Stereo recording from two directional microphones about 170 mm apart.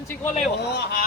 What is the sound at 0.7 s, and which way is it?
Speech, 90° left.